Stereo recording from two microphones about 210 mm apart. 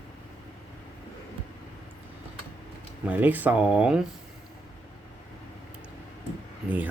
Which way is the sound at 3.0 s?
10° right (ahead or behind).